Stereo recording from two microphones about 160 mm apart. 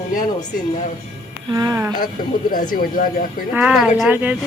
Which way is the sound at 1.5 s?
20° right (ahead or behind).